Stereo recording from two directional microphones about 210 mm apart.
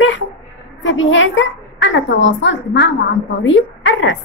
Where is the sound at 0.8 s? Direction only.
60° left (ahead or behind).